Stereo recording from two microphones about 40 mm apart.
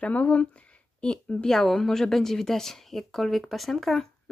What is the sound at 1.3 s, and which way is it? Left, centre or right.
A woman's voice, centre.